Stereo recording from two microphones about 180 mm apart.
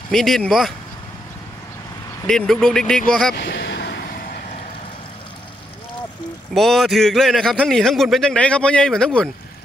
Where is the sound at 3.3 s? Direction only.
65° left (ahead or behind).